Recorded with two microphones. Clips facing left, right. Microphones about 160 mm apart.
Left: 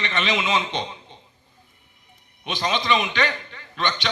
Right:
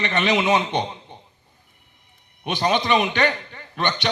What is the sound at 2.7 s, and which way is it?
Speech, 60° right (ahead or behind).